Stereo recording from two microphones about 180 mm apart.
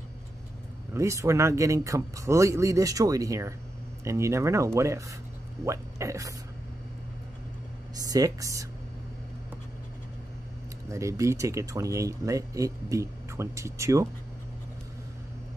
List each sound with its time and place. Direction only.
0.9 s speech: 15° right (ahead or behind)
8.0 s speech: 20° right (ahead or behind)
10.9 s speech: 15° right (ahead or behind)